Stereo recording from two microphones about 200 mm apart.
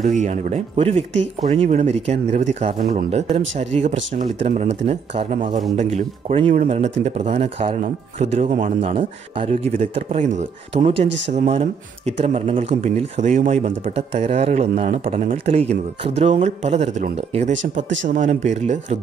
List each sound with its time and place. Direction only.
0.0 s speech: 35° right (ahead or behind)
8.8 s speech: 30° right (ahead or behind)
15.5 s speech: 30° right (ahead or behind)